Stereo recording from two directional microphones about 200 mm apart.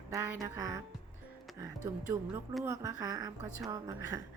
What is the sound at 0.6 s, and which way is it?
Speech, 15° right (ahead or behind).